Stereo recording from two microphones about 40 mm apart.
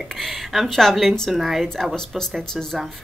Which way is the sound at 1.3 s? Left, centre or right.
Centre.